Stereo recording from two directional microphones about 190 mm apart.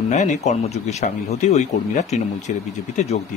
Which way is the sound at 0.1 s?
40° left (ahead or behind).